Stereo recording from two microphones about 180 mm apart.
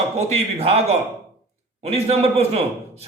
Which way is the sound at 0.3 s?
35° right (ahead or behind).